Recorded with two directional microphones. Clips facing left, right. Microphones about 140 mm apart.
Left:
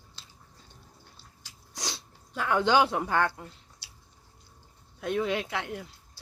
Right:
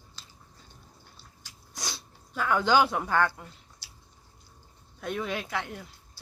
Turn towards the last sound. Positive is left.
turn(degrees=20)  # may be behind; listen again after turning